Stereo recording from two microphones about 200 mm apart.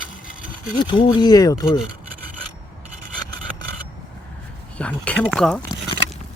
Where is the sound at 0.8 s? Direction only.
20° left (ahead or behind).